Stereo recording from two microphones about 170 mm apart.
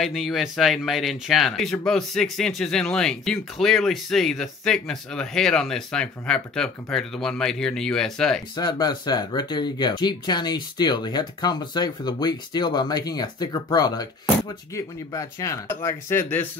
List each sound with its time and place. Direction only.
0.0 s speech: centre (ahead or behind)
8.5 s speech: 25° left (ahead or behind)